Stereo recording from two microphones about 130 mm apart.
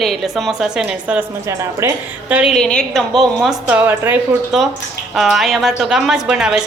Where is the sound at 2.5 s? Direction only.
5° left (ahead or behind).